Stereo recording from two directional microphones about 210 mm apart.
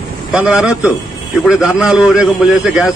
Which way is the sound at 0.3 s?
5° right (ahead or behind).